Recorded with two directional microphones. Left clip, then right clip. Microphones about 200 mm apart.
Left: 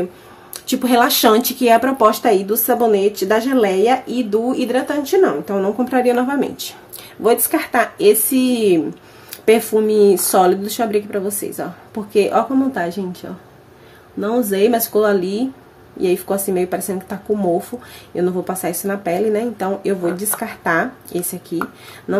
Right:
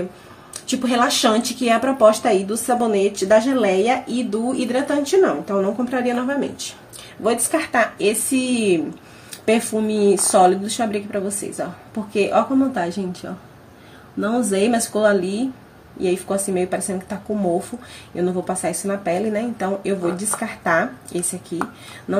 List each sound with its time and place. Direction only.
0.5 s speech: 50° left (ahead or behind)
7.2 s speech: 40° left (ahead or behind)
14.2 s speech: 25° left (ahead or behind)